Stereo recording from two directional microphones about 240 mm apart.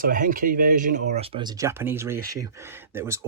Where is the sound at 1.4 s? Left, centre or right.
Centre.